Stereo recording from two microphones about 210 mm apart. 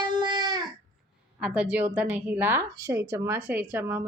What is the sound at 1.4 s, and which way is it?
A woman's voice, 5° right (ahead or behind).